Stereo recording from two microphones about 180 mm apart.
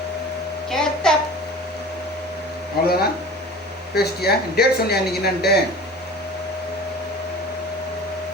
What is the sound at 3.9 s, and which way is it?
Speech, 60° left (ahead or behind).